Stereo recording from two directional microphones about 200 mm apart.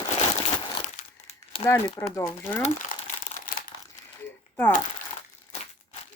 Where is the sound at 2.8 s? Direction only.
40° left (ahead or behind).